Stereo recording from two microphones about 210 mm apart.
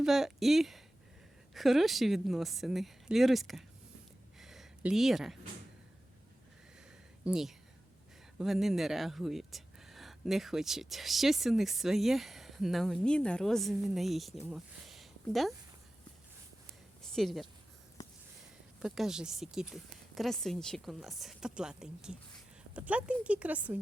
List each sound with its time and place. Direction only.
0.0 s speech: centre (ahead or behind)
4.4 s a sound: centre (ahead or behind)
7.3 s speech: centre (ahead or behind)
17.0 s speech: centre (ahead or behind)
18.0 s a sound: 20° left (ahead or behind)
18.8 s speech: centre (ahead or behind)